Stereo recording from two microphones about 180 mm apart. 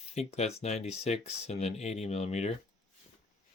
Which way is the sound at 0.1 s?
35° left (ahead or behind).